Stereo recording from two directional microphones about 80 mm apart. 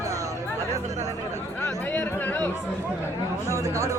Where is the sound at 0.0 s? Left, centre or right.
Right.